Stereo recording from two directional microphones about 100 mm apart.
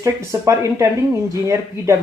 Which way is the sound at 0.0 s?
30° right (ahead or behind).